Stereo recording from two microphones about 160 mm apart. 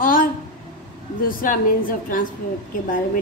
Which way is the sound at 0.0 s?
60° left (ahead or behind).